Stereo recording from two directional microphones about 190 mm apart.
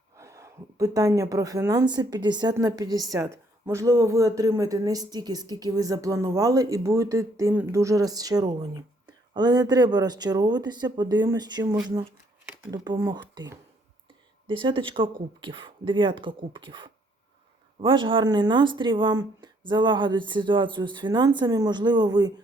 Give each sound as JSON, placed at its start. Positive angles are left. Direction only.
{"t": 0.2, "sound": "a woman's voice", "side_deg": -15}